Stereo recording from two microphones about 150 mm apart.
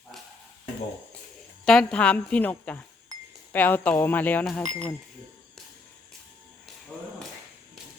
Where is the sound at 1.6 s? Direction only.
5° left (ahead or behind).